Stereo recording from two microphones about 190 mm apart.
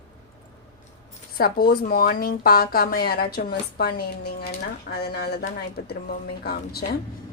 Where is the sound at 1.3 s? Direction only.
50° left (ahead or behind).